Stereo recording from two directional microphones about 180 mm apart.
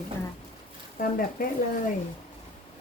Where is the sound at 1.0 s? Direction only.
55° left (ahead or behind).